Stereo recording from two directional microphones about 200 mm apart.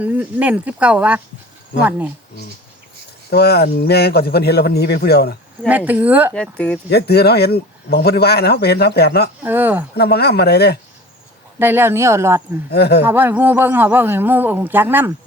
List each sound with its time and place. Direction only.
0.0 s speech: 10° right (ahead or behind)
3.2 s speech: 55° left (ahead or behind)
5.6 s speech: 10° right (ahead or behind)
6.3 s speech: 5° left (ahead or behind)
6.9 s speech: 55° left (ahead or behind)
9.4 s speech: 10° right (ahead or behind)
9.9 s speech: 55° left (ahead or behind)
11.6 s speech: 10° right (ahead or behind)
12.7 s speech: 55° left (ahead or behind)
13.1 s speech: 10° right (ahead or behind)